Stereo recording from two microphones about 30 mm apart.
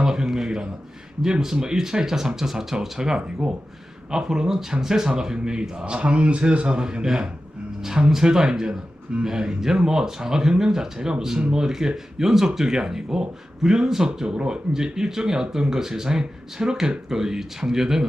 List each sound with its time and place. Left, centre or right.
0.0 s a man's voice: right
3.2 s a man's voice: right
5.8 s a man's voice: right; by 18.0 s centre